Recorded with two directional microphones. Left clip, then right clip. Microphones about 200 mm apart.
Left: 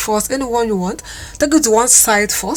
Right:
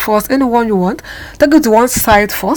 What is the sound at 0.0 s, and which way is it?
A woman's voice, 25° right (ahead or behind).